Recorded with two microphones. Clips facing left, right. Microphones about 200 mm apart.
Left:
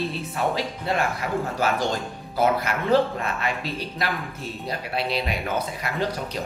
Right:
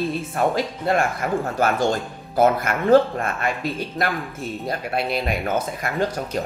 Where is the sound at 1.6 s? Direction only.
50° right (ahead or behind).